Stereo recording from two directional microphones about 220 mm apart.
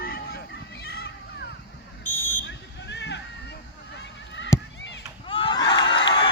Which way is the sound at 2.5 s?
50° left (ahead or behind).